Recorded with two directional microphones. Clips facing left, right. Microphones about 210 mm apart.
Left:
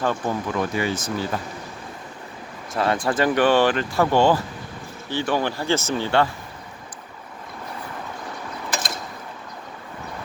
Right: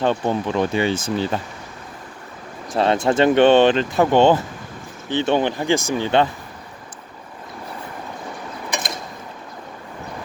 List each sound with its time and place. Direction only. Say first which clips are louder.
0.0 s speech: right 4 dB; 25° right (ahead or behind)
2.7 s speech: right 4 dB; 25° right (ahead or behind)